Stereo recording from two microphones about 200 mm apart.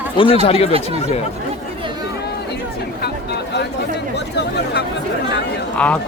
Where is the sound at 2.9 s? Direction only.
55° left (ahead or behind).